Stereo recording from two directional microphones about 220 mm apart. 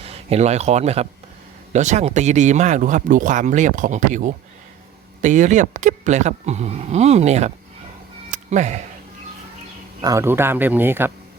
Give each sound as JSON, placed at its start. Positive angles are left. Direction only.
{"t": 0.0, "sound": "speech", "side_deg": -25}
{"t": 8.3, "sound": "cat", "side_deg": -30}
{"t": 10.0, "sound": "speech", "side_deg": -15}